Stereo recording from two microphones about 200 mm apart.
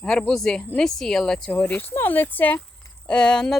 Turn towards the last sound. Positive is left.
turn(degrees=5)  # may be behind; listen again after turning